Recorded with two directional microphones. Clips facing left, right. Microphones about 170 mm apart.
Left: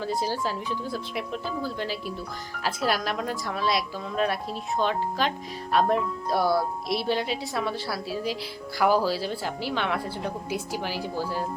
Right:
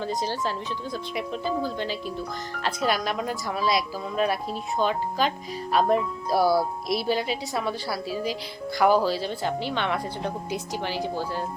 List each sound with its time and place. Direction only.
0.0 s speech: 5° left (ahead or behind)